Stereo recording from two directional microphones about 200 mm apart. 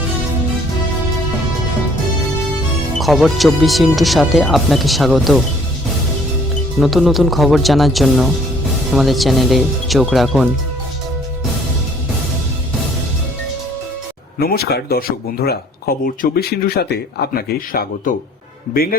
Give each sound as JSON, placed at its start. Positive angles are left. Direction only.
{"t": 3.0, "sound": "speech", "side_deg": 0}
{"t": 6.7, "sound": "speech", "side_deg": 0}
{"t": 14.3, "sound": "speech", "side_deg": 50}